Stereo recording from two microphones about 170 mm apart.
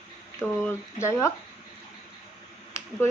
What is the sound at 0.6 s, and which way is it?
Speech, 15° left (ahead or behind).